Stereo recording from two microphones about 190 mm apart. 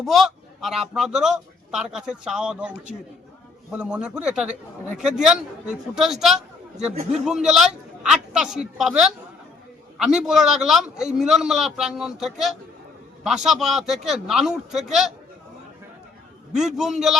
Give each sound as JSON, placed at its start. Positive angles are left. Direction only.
{"t": 0.0, "sound": "a man's voice", "side_deg": 0}
{"t": 16.6, "sound": "a man's voice", "side_deg": 0}